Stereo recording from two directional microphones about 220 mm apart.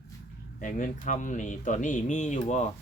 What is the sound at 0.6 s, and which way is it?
Speech, 35° left (ahead or behind).